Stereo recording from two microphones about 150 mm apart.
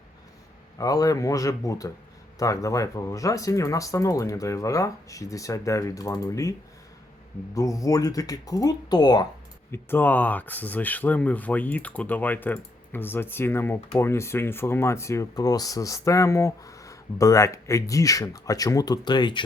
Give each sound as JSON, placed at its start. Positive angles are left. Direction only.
{"t": 0.8, "sound": "speech", "side_deg": 25}
{"t": 7.5, "sound": "speech", "side_deg": 20}
{"t": 9.7, "sound": "speech", "side_deg": 15}